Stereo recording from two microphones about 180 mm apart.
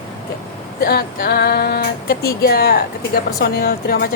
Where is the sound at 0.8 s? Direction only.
60° left (ahead or behind).